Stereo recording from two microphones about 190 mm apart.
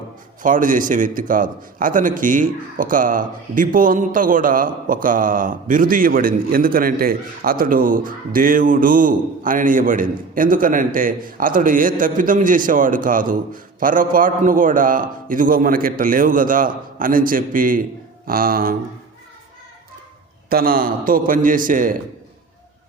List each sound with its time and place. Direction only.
0.4 s a man's voice: 45° right (ahead or behind)
20.5 s a man's voice: 50° right (ahead or behind)